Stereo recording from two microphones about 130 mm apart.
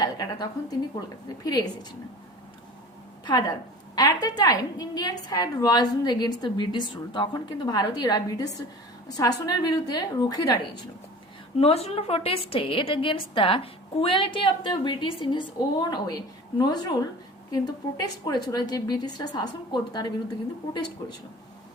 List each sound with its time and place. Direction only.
0.0 s a woman's voice: 30° left (ahead or behind)
3.9 s a woman's voice: 30° left (ahead or behind)
11.6 s a woman's voice: 50° left (ahead or behind); by 21.2 s 30° left (ahead or behind)